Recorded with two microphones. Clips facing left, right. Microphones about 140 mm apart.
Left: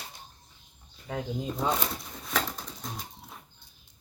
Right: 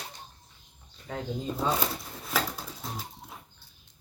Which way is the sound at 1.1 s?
15° left (ahead or behind).